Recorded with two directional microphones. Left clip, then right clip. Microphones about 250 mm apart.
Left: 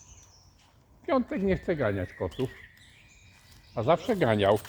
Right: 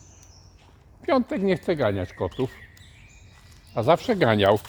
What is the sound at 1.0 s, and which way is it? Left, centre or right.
Speech, right.